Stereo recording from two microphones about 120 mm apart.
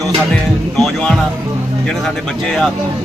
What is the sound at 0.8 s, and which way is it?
Music, 5° left (ahead or behind).